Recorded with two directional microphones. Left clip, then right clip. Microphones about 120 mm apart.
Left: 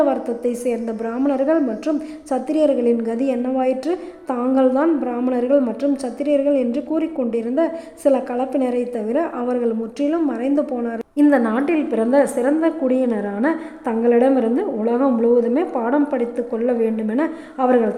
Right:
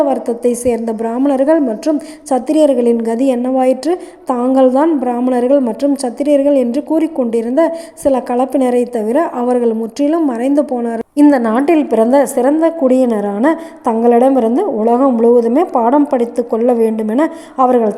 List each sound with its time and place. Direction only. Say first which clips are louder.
0.0 s a woman's voice: right 5 dB; 30° right (ahead or behind)